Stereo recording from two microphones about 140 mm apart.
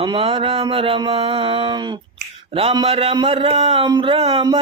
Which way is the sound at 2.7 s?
40° right (ahead or behind).